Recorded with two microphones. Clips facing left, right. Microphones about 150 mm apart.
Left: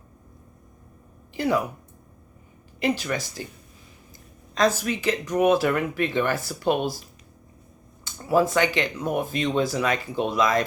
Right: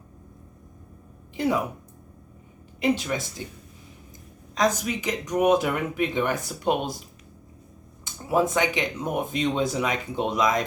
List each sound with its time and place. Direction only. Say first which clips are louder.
1.4 s speech: left 1 dB; 20° right (ahead or behind)
2.8 s speech: right 1 dB; 20° right (ahead or behind)
4.5 s speech: left 2 dB; 15° right (ahead or behind)
8.0 s speech: left 2 dB; 20° right (ahead or behind)